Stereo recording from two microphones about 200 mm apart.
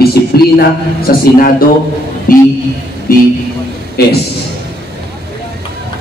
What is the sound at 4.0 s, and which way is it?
Speech, 50° left (ahead or behind).